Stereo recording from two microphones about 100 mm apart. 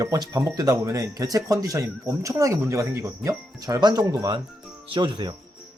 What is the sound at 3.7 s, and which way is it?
Speech, 45° right (ahead or behind).